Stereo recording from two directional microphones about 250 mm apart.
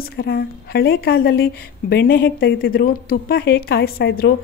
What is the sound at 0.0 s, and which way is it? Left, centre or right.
Speech, left.